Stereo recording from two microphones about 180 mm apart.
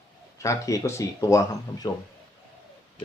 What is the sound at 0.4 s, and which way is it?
Speech, 15° left (ahead or behind).